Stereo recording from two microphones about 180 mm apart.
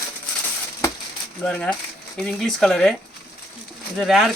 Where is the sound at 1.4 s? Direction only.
5° left (ahead or behind).